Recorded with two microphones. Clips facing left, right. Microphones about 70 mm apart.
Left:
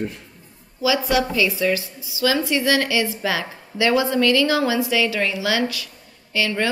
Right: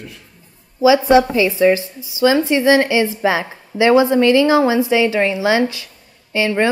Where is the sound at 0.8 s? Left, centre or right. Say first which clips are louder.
Right 9 dB; right.